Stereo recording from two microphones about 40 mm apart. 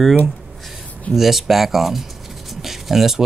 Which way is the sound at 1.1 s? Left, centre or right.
Centre.